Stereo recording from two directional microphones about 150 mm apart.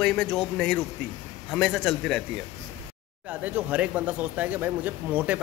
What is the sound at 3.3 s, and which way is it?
Speech, 10° right (ahead or behind).